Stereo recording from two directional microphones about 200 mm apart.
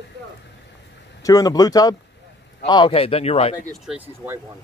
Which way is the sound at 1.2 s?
20° left (ahead or behind).